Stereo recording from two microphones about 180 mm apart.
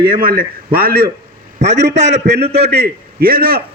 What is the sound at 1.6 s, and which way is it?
Speech, 75° right (ahead or behind).